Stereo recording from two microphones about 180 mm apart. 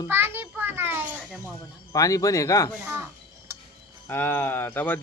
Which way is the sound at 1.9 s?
20° left (ahead or behind).